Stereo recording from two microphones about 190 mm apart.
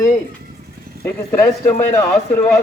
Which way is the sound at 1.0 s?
10° left (ahead or behind).